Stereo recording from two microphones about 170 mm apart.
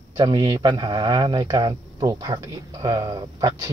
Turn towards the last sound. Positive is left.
turn(degrees=-20)  # may be behind; listen again after turning